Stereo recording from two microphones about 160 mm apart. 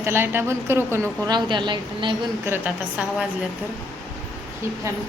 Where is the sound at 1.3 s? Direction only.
30° right (ahead or behind).